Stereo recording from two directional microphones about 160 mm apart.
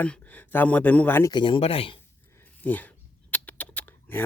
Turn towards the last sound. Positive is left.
turn(degrees=10)  # may be behind; listen again after turning